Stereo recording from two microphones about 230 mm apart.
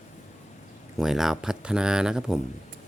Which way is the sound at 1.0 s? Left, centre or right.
Centre.